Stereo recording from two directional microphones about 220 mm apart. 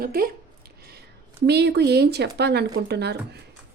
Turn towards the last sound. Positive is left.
turn(degrees=-50)  # may be behind; listen again after turning